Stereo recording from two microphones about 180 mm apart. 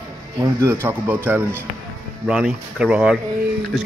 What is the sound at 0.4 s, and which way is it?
Speech, 15° right (ahead or behind).